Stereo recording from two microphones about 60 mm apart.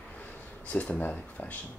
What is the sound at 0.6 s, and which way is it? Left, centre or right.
Speech, left.